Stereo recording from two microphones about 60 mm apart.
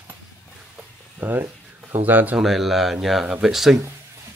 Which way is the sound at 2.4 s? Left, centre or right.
Centre.